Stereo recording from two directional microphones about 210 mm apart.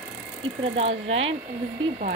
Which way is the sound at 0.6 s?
30° right (ahead or behind).